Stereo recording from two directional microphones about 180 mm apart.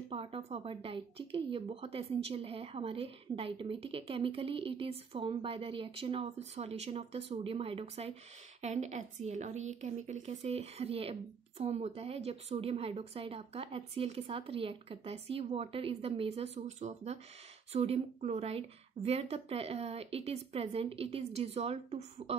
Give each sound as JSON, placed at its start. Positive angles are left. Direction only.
{"t": 0.1, "sound": "a woman's voice", "side_deg": -30}